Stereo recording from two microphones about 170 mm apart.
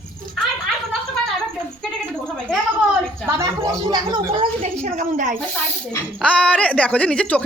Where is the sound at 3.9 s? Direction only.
30° right (ahead or behind); by 5.3 s 45° right (ahead or behind).